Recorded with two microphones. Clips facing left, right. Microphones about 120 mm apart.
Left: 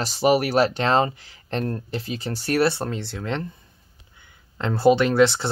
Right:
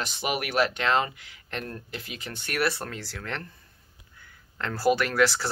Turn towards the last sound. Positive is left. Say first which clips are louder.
# left 6 dB
turn(degrees=25)  # may be behind; listen again after turning